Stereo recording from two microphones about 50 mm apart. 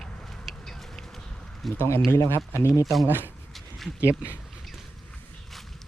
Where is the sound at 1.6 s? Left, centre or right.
Centre.